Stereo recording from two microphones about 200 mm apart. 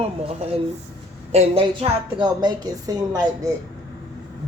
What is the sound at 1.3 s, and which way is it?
A woman's voice, 30° right (ahead or behind).